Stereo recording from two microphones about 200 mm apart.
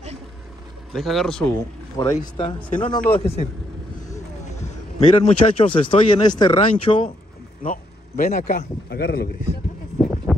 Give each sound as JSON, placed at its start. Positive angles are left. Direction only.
{"t": 0.9, "sound": "speech", "side_deg": 0}
{"t": 1.5, "sound": "speech", "side_deg": 15}
{"t": 4.9, "sound": "a man's voice", "side_deg": 35}
{"t": 7.6, "sound": "speech", "side_deg": 40}
{"t": 8.8, "sound": "a man's voice", "side_deg": 50}